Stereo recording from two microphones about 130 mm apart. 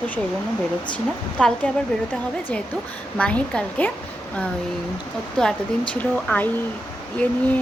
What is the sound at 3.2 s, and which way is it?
Speech, 10° left (ahead or behind).